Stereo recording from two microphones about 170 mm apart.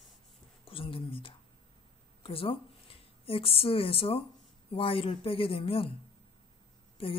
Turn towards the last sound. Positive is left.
turn(degrees=35)  # may be behind; listen again after turning